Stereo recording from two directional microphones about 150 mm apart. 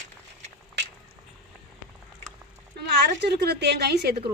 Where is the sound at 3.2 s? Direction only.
90° right.